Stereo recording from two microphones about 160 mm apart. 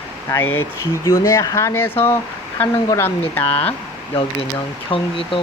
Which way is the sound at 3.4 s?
35° left (ahead or behind).